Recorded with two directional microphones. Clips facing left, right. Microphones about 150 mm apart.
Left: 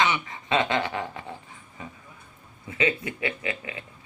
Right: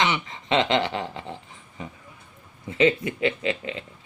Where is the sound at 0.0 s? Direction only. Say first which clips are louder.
Even; 25° right (ahead or behind).